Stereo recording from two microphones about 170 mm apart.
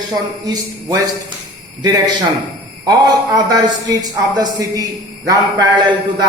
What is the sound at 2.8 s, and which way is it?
Speech, 20° right (ahead or behind).